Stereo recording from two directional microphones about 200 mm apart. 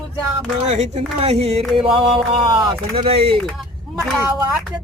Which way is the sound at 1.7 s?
25° right (ahead or behind).